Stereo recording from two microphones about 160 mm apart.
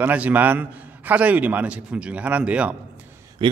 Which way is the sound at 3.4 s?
30° right (ahead or behind).